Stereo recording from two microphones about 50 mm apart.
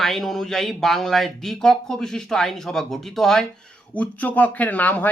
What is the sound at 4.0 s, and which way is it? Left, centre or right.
Speech, left.